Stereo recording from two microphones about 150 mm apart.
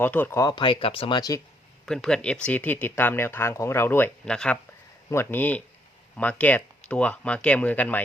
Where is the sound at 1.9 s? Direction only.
5° left (ahead or behind).